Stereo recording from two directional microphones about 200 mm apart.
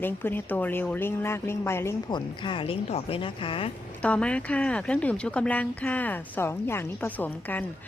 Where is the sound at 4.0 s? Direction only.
5° left (ahead or behind).